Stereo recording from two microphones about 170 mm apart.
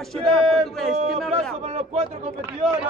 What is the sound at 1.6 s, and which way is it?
Speech, 40° right (ahead or behind).